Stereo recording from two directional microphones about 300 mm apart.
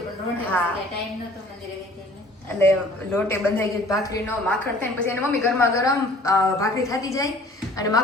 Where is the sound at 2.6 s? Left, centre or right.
Centre.